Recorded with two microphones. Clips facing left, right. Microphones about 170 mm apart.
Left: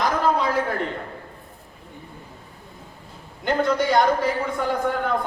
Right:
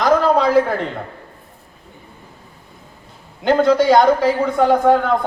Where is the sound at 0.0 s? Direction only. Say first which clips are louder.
Right 7 dB; 90° right.